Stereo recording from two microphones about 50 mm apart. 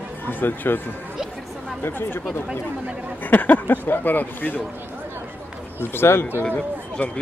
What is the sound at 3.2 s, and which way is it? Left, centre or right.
Speech, left.